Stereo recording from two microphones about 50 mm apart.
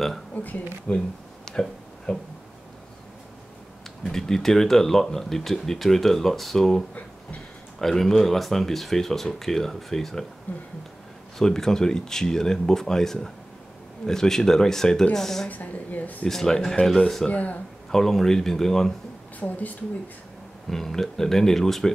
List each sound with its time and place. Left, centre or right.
0.3 s speech: left
0.9 s a sound: centre
4.1 s speech: centre
7.8 s speech: centre
10.5 s speech: left
11.3 s speech: centre
15.4 s speech: left
16.3 s speech: centre
17.3 s speech: left
17.9 s speech: centre
19.4 s speech: left
20.7 s speech: centre